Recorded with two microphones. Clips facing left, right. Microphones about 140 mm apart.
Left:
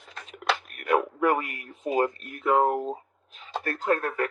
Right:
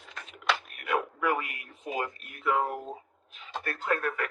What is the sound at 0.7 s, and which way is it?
A man's voice, 45° left (ahead or behind).